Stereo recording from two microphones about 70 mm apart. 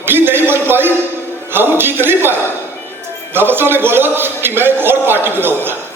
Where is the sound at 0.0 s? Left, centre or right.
Right.